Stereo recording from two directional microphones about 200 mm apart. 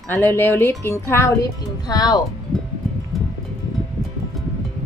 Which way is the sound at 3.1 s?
Centre (ahead or behind).